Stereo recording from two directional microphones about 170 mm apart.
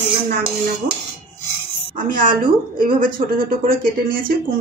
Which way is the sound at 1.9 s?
55° right (ahead or behind).